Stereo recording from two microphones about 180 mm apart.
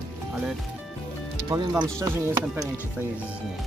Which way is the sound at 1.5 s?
20° right (ahead or behind).